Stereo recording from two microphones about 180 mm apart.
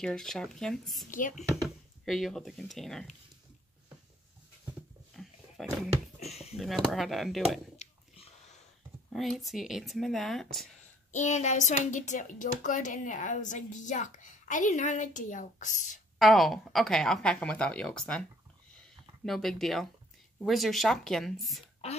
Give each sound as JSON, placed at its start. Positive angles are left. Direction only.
{"t": 0.0, "sound": "speech", "side_deg": 5}
{"t": 1.1, "sound": "speech", "side_deg": 50}
{"t": 2.0, "sound": "speech", "side_deg": 0}
{"t": 5.1, "sound": "roaring cats", "side_deg": 0}
{"t": 6.5, "sound": "speech", "side_deg": 0}
{"t": 7.7, "sound": "chewing", "side_deg": 40}
{"t": 9.1, "sound": "speech", "side_deg": 0}
{"t": 11.1, "sound": "speech", "side_deg": 40}
{"t": 16.2, "sound": "speech", "side_deg": 0}
{"t": 19.2, "sound": "speech", "side_deg": 0}